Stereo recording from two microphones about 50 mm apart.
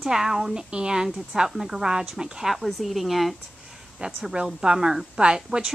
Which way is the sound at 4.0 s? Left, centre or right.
Centre.